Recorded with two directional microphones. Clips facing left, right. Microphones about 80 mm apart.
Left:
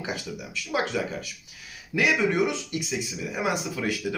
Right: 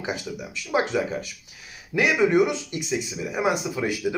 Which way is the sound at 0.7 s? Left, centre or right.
Right.